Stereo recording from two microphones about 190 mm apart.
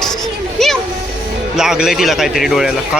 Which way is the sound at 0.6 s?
Centre (ahead or behind).